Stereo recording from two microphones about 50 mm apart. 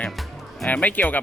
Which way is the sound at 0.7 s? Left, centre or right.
Left.